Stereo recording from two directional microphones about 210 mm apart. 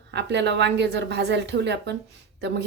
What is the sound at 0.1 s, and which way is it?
A woman's voice, 55° right (ahead or behind).